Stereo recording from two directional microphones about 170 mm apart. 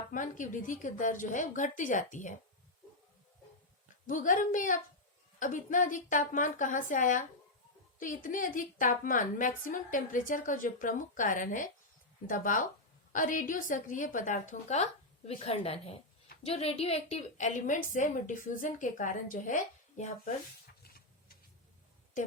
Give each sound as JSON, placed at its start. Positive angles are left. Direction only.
{"t": 0.1, "sound": "a woman's voice", "side_deg": 50}
{"t": 4.0, "sound": "a woman's voice", "side_deg": 50}